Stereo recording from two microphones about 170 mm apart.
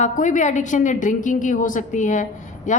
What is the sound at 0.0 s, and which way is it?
A woman's voice, 45° left (ahead or behind).